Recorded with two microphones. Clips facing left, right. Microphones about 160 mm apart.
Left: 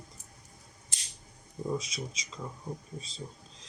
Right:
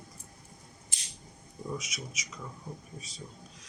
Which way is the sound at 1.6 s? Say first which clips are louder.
Left 4 dB; 30° left (ahead or behind).